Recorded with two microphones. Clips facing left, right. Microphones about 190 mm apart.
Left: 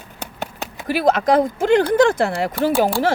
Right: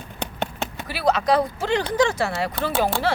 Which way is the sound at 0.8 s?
50° left (ahead or behind).